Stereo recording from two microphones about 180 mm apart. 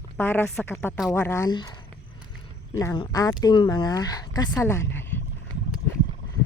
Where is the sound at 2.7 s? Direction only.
20° left (ahead or behind).